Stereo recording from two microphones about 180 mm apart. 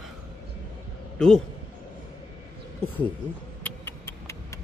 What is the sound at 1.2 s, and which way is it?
Speech, 5° left (ahead or behind).